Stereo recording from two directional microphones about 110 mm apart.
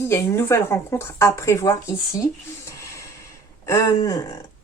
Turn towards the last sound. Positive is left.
turn(degrees=30)  # may be behind; listen again after turning